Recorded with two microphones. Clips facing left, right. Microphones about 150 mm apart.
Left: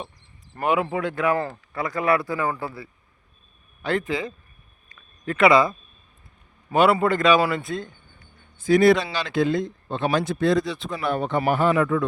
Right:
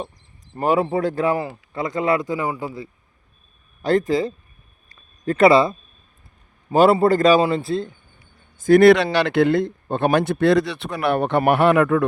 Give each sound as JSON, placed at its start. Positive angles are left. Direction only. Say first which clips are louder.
{"t": 0.6, "sound": "speech", "louder": "right 4 dB", "side_deg": -35}
{"t": 1.7, "sound": "a man's voice", "louder": "right 2 dB", "side_deg": -20}
{"t": 3.8, "sound": "speech", "louder": "right 7 dB", "side_deg": -40}
{"t": 4.9, "sound": "a sound", "louder": "right 6 dB", "side_deg": -35}
{"t": 6.7, "sound": "speech", "louder": "right 4 dB", "side_deg": -35}
{"t": 8.5, "sound": "speech", "louder": "right 5 dB", "side_deg": -50}
{"t": 8.8, "sound": "speech", "louder": "right 5 dB", "side_deg": -75}